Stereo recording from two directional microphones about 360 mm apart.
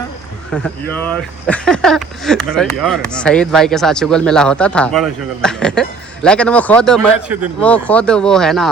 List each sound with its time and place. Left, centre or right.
0.5 s speech: centre